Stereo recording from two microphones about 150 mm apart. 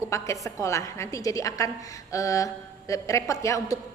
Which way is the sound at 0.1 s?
20° left (ahead or behind).